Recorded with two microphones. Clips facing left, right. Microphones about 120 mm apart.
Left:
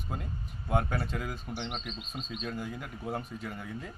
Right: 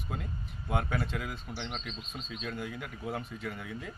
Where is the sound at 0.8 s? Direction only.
40° left (ahead or behind).